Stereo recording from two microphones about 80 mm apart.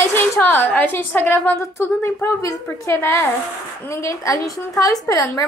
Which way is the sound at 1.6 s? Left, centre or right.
Left.